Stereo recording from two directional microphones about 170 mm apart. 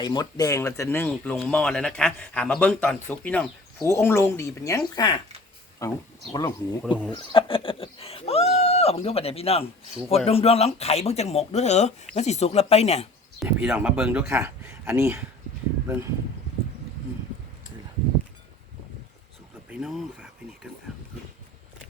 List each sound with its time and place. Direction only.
0.0 s speech: 25° left (ahead or behind)
13.4 s speech: 5° right (ahead or behind)
19.7 s speech: centre (ahead or behind)